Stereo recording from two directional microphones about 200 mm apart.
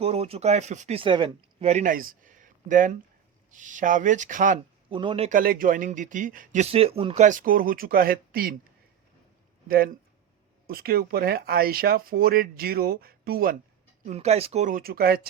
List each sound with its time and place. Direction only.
0.0 s speech: 30° right (ahead or behind)
4.9 s speech: 25° right (ahead or behind)
5.4 s speech: 45° right (ahead or behind)
9.6 s speech: 45° right (ahead or behind)
14.0 s speech: 35° right (ahead or behind)